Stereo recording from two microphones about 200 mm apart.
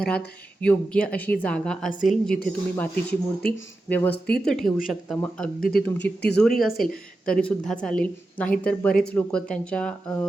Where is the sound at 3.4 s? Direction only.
70° left (ahead or behind).